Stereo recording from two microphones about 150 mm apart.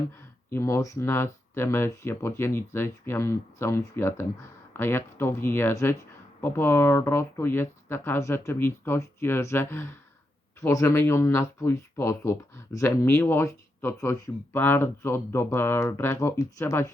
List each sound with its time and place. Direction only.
0.5 s speech: 20° left (ahead or behind)